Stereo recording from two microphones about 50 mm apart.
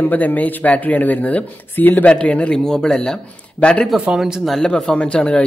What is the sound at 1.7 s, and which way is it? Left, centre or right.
Speech, left.